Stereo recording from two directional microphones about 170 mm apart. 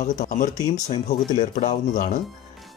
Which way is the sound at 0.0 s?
45° left (ahead or behind).